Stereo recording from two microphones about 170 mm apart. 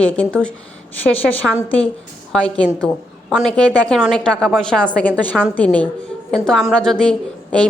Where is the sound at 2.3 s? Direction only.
5° left (ahead or behind).